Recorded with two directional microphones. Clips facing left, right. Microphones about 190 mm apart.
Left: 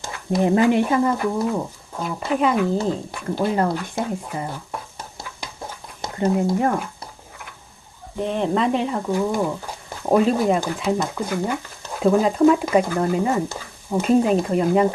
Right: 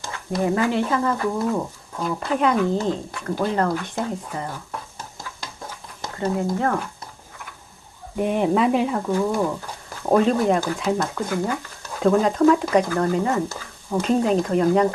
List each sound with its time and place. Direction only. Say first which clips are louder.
0.4 s speech: left 4 dB; 20° left (ahead or behind)
6.0 s a sound: left 4 dB; 15° left (ahead or behind)
6.6 s speech: left 2 dB; 15° left (ahead or behind)
8.2 s speech: right 2 dB; 10° right (ahead or behind); by 14.8 s 5° left (ahead or behind)